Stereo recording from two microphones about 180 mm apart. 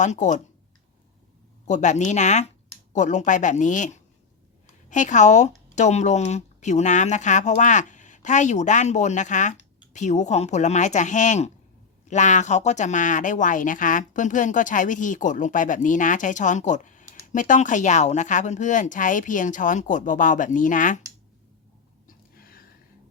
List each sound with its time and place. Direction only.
0.0 s speech: 45° left (ahead or behind)
1.6 s speech: 40° left (ahead or behind)
22.0 s a sound: 55° left (ahead or behind)